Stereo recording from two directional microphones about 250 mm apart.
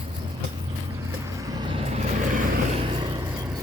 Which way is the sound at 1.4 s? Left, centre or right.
Centre.